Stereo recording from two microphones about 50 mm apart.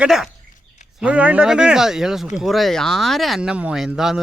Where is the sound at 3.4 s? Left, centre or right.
Centre.